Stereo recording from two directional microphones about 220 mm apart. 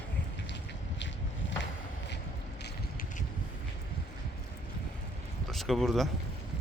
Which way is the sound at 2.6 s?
40° left (ahead or behind).